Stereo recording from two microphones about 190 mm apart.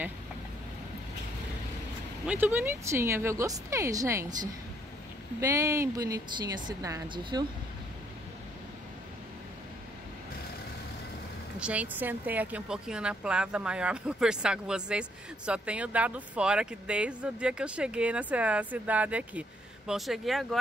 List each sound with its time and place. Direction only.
2.2 s speech: 10° right (ahead or behind)
5.4 s speech: 15° right (ahead or behind)
11.6 s speech: 5° right (ahead or behind)